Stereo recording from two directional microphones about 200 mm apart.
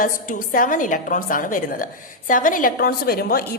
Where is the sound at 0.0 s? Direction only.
45° left (ahead or behind).